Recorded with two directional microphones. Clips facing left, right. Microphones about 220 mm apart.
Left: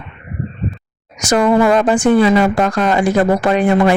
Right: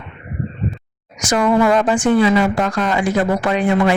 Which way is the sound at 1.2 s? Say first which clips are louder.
Left 3 dB; 40° left (ahead or behind).